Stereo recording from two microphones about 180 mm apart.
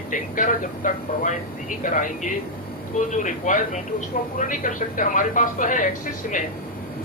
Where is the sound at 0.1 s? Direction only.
45° left (ahead or behind).